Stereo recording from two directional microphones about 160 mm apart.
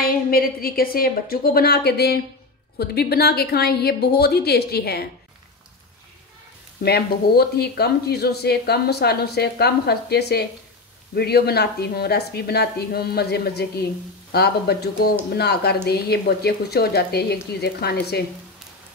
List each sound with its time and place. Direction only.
0.0 s a woman's voice: 70° left (ahead or behind)
6.8 s speech: 85° left